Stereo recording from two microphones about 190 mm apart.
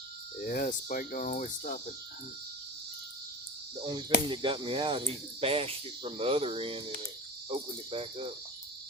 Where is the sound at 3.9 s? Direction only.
25° right (ahead or behind).